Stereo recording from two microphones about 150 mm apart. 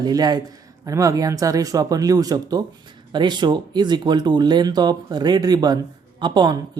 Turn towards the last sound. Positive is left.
turn(degrees=-30)  # may be behind; listen again after turning